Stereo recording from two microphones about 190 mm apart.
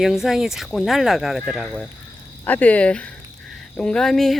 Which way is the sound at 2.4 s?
10° left (ahead or behind).